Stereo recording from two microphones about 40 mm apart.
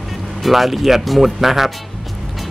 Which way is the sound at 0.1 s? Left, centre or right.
Centre.